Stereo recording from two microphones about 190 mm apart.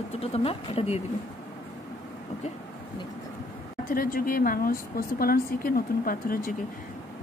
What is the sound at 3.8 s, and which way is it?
A woman's voice, 50° left (ahead or behind).